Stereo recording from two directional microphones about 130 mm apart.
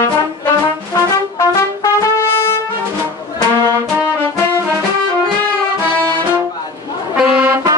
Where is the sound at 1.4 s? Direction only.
25° left (ahead or behind).